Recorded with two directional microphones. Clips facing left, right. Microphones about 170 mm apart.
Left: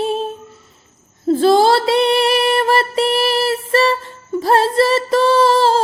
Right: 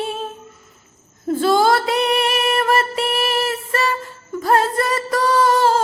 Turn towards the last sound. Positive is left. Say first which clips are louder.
# left 3 dB
turn(degrees=30)  # may be behind; listen again after turning